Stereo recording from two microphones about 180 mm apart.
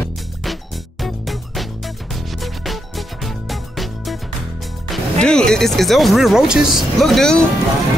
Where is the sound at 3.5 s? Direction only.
Centre (ahead or behind).